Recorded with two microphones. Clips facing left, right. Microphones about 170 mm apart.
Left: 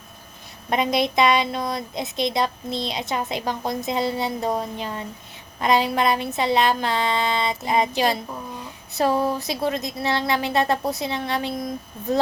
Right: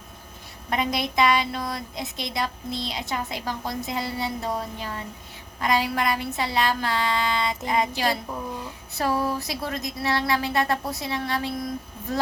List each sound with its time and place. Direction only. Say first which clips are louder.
0.7 s a woman's voice: left 5 dB; 20° left (ahead or behind)